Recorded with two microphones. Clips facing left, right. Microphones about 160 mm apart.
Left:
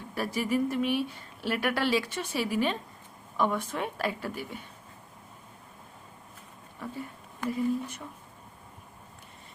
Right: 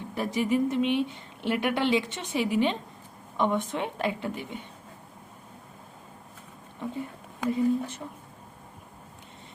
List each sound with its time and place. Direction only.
0.1 s a woman's voice: 20° right (ahead or behind)
6.8 s a woman's voice: 20° right (ahead or behind)